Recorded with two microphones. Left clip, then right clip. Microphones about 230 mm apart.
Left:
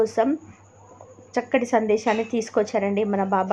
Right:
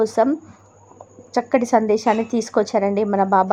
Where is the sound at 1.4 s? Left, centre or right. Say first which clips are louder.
Right 4 dB; centre.